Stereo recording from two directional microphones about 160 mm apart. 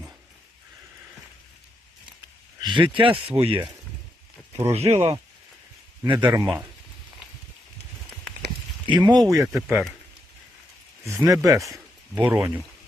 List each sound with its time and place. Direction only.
2.6 s speech: 30° right (ahead or behind)
4.7 s speech: 40° right (ahead or behind)
6.1 s speech: 25° right (ahead or behind)
8.9 s speech: 25° right (ahead or behind)
11.0 s speech: 20° right (ahead or behind)